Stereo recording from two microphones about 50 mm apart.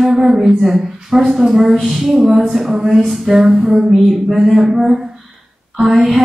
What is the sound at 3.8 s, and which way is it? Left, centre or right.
Speech, centre.